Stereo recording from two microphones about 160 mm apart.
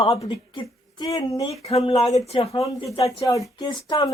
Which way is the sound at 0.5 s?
25° left (ahead or behind).